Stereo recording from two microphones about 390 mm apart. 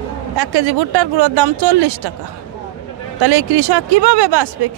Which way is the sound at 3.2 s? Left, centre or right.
Right.